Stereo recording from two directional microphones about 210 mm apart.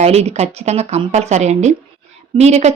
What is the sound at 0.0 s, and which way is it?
A woman's voice, 30° right (ahead or behind).